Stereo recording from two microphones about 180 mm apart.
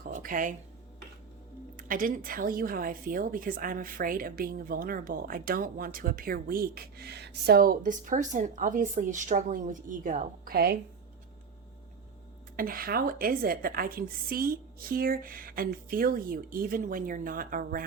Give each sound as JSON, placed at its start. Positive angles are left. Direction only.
{"t": 0.0, "sound": "a sound", "side_deg": -50}
{"t": 1.7, "sound": "a woman's voice", "side_deg": -50}
{"t": 12.5, "sound": "a woman's voice", "side_deg": -55}